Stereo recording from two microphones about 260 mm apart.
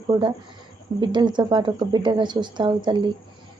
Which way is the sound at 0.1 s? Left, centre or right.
Centre.